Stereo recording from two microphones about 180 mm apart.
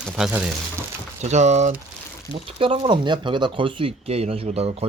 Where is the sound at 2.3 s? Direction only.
30° right (ahead or behind).